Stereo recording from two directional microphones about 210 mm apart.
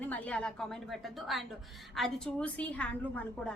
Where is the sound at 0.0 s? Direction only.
5° left (ahead or behind).